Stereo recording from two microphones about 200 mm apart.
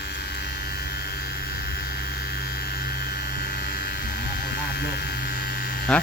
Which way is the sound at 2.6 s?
50° left (ahead or behind).